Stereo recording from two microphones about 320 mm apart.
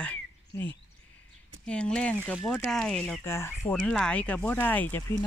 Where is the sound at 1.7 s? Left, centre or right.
Centre.